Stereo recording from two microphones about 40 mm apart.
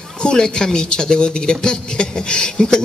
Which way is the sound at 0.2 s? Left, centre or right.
Centre.